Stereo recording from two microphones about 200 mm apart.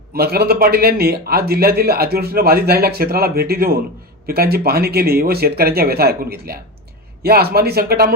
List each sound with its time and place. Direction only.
0.1 s a man's voice: 50° right (ahead or behind)